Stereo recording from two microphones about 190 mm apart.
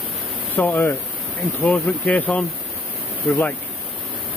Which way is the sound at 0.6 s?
10° left (ahead or behind).